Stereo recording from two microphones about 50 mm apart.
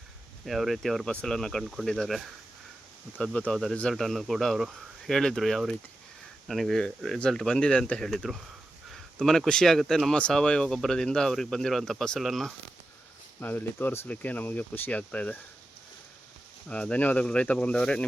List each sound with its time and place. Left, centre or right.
0.4 s speech: centre
2.0 s speech: centre
3.5 s speech: centre; by 8.0 s left
8.0 s speech: centre
12.2 s speech: centre
13.4 s speech: left
14.1 s speech: left
16.6 s speech: left